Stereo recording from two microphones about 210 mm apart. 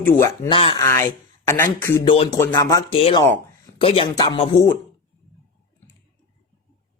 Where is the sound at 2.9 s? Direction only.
30° left (ahead or behind).